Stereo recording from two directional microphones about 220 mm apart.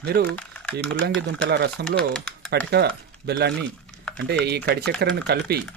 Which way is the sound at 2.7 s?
50° right (ahead or behind).